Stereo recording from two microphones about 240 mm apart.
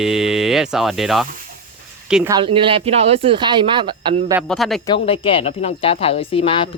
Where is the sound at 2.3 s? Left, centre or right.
Right.